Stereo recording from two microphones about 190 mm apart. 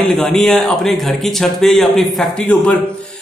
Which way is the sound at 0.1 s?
Centre (ahead or behind).